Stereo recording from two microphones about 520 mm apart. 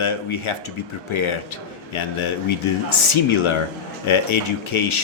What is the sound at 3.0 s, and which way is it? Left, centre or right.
A man's voice, left.